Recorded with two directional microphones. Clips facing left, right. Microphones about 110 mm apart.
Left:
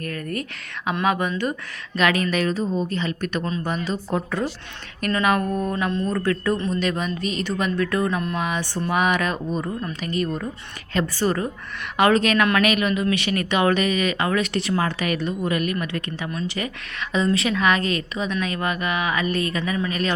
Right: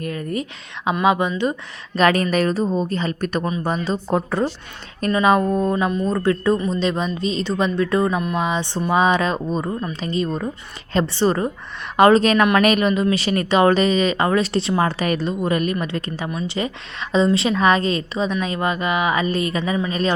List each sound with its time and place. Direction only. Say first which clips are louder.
0.0 s a woman's voice: right 3 dB; 20° right (ahead or behind)
2.0 s a woman's voice: right 4 dB; 40° right (ahead or behind)
8.1 s a sound: right 3 dB; 10° right (ahead or behind)
8.4 s a woman's voice: right 4 dB; 25° right (ahead or behind)